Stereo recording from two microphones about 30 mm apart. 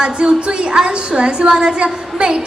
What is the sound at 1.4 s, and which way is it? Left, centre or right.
Speech, right.